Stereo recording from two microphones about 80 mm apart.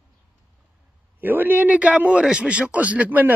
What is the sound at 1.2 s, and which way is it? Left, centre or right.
A man's voice, right.